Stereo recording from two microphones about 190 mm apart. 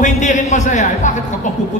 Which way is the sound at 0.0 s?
40° left (ahead or behind).